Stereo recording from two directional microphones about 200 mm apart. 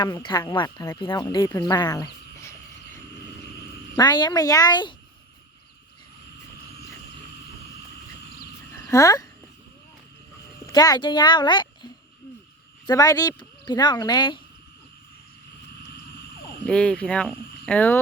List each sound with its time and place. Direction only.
0.0 s speech: 20° left (ahead or behind)
8.8 s speech: 15° left (ahead or behind)
10.7 s speech: 20° left (ahead or behind)
12.9 s speech: 20° left (ahead or behind)
16.6 s speech: 5° left (ahead or behind)